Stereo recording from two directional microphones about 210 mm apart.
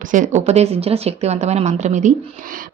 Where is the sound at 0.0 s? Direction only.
40° right (ahead or behind).